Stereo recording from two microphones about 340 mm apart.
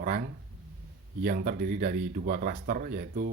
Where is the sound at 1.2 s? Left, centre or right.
Right.